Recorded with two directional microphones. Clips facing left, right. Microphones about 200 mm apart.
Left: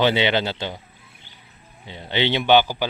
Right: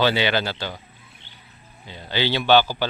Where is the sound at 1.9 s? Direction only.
25° left (ahead or behind).